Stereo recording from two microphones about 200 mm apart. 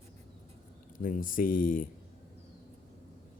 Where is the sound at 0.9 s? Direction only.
45° left (ahead or behind).